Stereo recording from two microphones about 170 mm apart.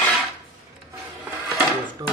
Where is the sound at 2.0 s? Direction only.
25° right (ahead or behind).